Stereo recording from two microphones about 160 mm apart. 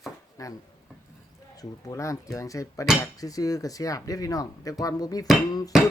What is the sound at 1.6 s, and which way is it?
Speech, 20° left (ahead or behind).